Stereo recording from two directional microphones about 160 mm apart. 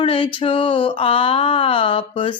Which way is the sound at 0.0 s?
35° left (ahead or behind).